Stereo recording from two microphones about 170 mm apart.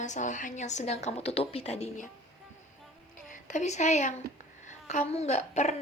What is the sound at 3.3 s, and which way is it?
A woman's voice, 45° left (ahead or behind).